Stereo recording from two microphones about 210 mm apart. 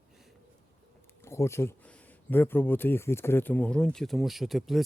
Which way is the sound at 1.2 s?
15° left (ahead or behind).